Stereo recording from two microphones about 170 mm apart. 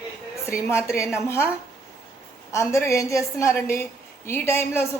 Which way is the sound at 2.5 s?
15° left (ahead or behind).